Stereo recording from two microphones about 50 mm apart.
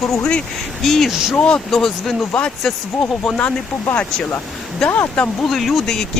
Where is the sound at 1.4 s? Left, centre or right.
Centre.